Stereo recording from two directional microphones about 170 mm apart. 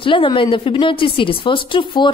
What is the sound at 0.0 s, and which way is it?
A woman's voice, 30° left (ahead or behind).